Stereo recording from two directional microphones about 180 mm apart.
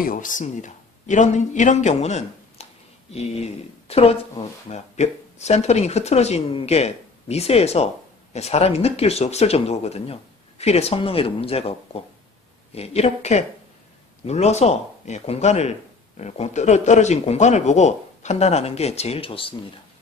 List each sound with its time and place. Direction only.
0.0 s a man's voice: 50° left (ahead or behind); by 19.5 s 30° left (ahead or behind)